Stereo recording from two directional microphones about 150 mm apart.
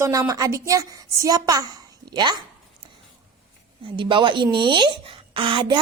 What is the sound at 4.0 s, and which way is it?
A woman's voice, 35° right (ahead or behind).